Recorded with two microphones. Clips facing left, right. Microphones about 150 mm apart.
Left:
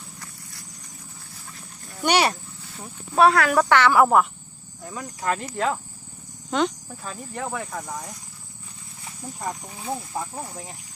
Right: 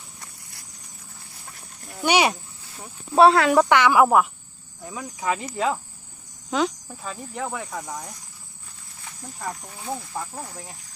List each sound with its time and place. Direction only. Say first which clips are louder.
2.0 s cricket: right 1 dB; 10° right (ahead or behind)
3.2 s speech: right 2 dB; 25° right (ahead or behind); by 8.1 s centre (ahead or behind)
9.6 s speech: left 1 dB; 5° left (ahead or behind)
10.4 s speech: left 2 dB; 20° left (ahead or behind)